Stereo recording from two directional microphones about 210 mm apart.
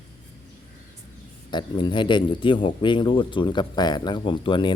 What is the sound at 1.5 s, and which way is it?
Speech, 20° left (ahead or behind).